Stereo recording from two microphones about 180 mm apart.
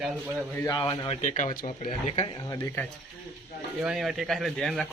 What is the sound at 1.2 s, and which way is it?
Speech, 40° left (ahead or behind).